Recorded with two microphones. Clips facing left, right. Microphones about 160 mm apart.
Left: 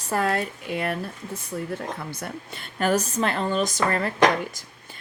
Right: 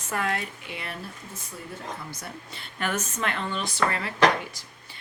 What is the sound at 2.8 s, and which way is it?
Speech, 35° left (ahead or behind).